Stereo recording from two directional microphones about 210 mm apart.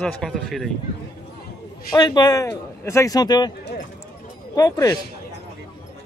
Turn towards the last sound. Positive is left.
turn(degrees=15)  # may be behind; listen again after turning